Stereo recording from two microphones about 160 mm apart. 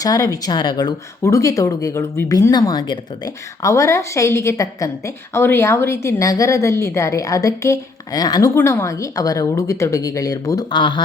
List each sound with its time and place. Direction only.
0.0 s speech: 20° left (ahead or behind)